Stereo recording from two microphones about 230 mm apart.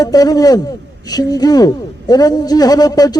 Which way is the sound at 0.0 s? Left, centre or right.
Centre.